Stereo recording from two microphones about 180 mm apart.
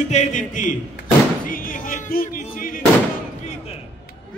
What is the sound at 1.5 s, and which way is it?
Music, 50° left (ahead or behind).